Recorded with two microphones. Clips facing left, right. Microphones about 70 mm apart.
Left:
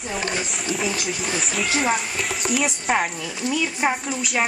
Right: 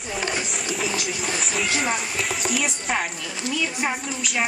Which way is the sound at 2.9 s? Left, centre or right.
Centre.